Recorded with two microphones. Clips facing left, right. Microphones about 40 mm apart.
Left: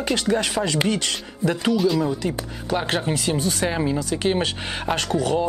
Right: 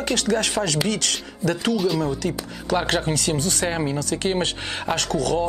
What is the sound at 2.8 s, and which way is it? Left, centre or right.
Speech, centre.